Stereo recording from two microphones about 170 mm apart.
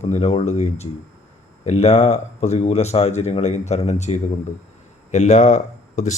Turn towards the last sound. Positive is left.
turn(degrees=45)  # may be behind; listen again after turning